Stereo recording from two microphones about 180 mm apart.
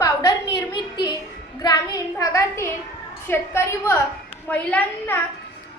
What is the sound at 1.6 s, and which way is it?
A woman's voice, 20° left (ahead or behind).